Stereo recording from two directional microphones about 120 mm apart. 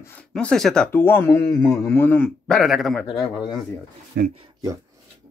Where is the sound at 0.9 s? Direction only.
20° left (ahead or behind); by 3.0 s centre (ahead or behind).